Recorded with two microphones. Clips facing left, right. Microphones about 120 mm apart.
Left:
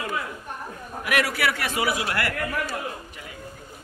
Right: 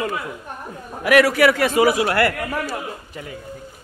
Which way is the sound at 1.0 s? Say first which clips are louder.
Right 10 dB; 90° right.